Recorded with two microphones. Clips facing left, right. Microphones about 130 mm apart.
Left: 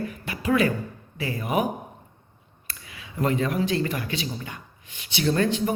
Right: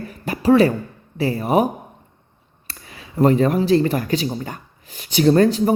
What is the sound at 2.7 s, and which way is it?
Speech, 35° right (ahead or behind).